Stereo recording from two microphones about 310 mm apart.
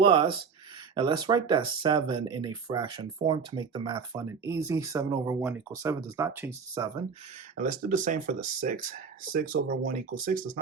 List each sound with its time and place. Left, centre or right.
0.0 s speech: centre
7.5 s speech: right